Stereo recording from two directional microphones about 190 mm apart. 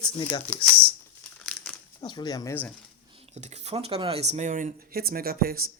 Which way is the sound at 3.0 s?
30° right (ahead or behind).